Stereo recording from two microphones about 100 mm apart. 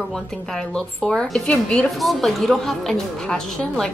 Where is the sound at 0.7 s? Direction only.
5° left (ahead or behind).